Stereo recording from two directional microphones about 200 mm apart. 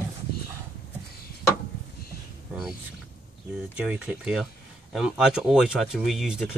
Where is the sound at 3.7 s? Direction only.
5° right (ahead or behind).